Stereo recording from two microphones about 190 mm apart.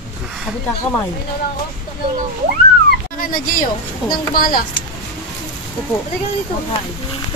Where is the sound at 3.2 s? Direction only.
45° left (ahead or behind).